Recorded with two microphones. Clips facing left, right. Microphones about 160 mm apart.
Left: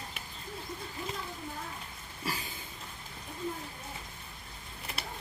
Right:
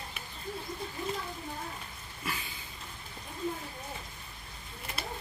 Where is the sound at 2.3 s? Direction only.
35° left (ahead or behind).